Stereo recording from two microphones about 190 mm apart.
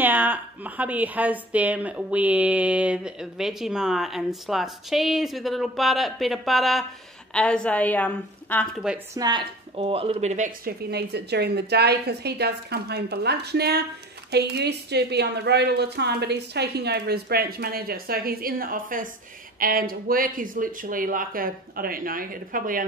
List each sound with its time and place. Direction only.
0.0 s a woman's voice: 10° right (ahead or behind); by 8.6 s 10° left (ahead or behind)
8.8 s speech: 10° right (ahead or behind)
9.2 s a woman's voice: 25° right (ahead or behind); by 10.7 s 40° right (ahead or behind)
10.8 s a woman's voice: 60° right (ahead or behind)